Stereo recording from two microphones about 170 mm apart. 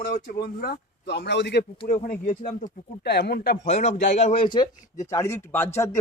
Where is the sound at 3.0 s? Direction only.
75° left (ahead or behind).